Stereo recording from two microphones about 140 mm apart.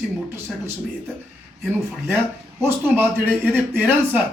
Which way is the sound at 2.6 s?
15° right (ahead or behind).